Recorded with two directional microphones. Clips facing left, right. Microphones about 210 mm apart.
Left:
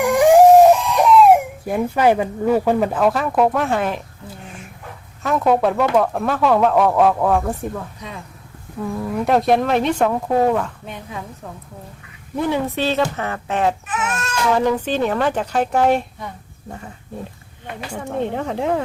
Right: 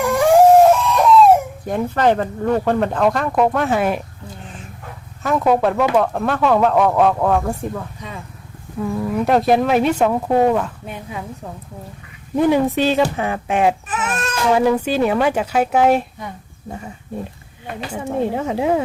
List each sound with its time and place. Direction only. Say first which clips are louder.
0.0 s crying: left 1 dB; 15° left (ahead or behind); by 4.0 s 10° right (ahead or behind)
5.2 s speech: right 1 dB; centre (ahead or behind)
12.4 s speech: right 5 dB; 15° right (ahead or behind)
13.8 s speech: right 1 dB; 35° right (ahead or behind)
14.5 s speech: right 3 dB; 10° right (ahead or behind)
17.8 s speech: right 3 dB; 5° right (ahead or behind)